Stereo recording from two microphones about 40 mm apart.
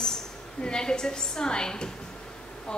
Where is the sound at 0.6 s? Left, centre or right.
Centre.